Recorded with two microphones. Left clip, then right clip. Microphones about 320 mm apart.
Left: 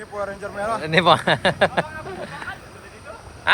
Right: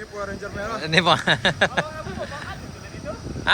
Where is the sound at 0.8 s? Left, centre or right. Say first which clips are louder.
Left 2 dB; centre.